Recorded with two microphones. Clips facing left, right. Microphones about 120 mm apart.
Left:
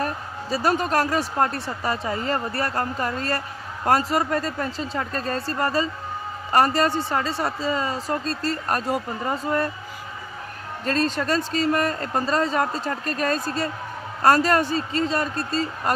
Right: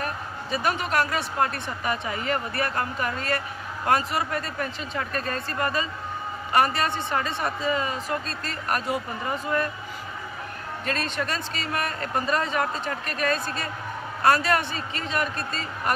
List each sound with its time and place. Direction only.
0.0 s speech: 35° left (ahead or behind)
10.9 s speech: 35° left (ahead or behind)